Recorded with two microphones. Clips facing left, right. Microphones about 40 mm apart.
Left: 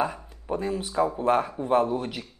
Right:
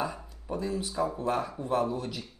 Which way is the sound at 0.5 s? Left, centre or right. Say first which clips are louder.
Left 4 dB; left.